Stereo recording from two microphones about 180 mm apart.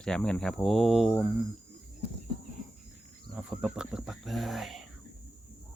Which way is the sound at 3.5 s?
5° right (ahead or behind).